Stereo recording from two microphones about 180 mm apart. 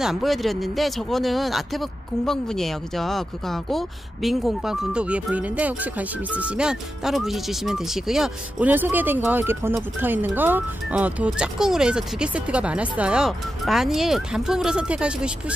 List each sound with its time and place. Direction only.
0.0 s speech: centre (ahead or behind)